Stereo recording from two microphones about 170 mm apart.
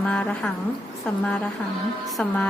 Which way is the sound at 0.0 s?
5° left (ahead or behind).